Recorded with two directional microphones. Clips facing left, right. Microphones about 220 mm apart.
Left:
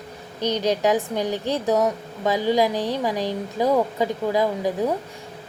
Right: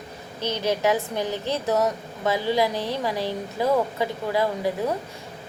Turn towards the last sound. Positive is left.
turn(degrees=15)  # may be behind; listen again after turning